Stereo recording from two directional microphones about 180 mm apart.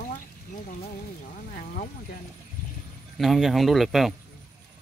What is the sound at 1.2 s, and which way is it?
Speech, 50° left (ahead or behind).